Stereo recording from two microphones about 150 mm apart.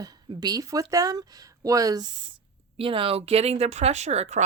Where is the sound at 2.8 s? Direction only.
35° right (ahead or behind).